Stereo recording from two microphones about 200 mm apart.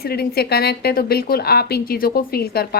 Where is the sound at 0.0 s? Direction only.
50° left (ahead or behind).